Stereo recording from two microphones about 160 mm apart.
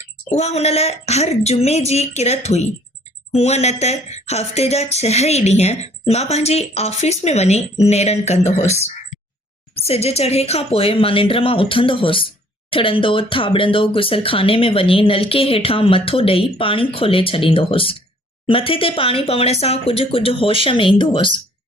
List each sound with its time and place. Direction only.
0.3 s speech: 40° left (ahead or behind)
3.3 s a sound: 40° left (ahead or behind)
9.7 s speech: 40° left (ahead or behind)